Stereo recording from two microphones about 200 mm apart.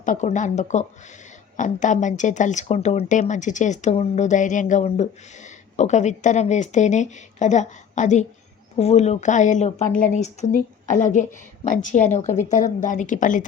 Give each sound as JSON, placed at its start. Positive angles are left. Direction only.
{"t": 0.0, "sound": "speech", "side_deg": 40}